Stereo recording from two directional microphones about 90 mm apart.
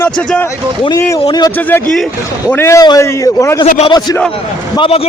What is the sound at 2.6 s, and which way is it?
A man's voice, 30° left (ahead or behind).